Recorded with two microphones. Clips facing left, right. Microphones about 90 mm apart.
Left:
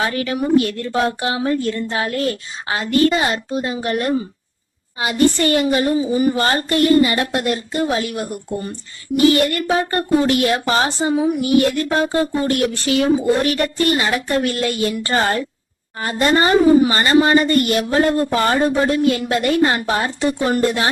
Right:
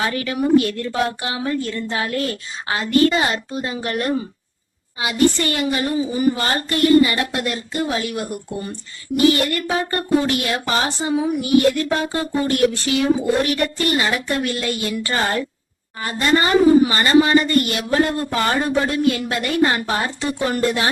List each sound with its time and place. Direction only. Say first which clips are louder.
0.0 s a woman's voice: left 1 dB; 35° left (ahead or behind)
4.9 s a woman's voice: left 2 dB; 40° left (ahead or behind)
13.1 s a woman's voice: left 2 dB; 25° left (ahead or behind)